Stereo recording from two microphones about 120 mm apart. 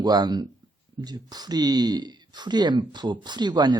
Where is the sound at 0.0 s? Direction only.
35° right (ahead or behind).